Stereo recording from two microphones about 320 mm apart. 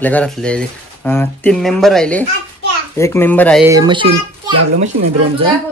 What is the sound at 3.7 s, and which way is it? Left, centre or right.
A child's voice, centre.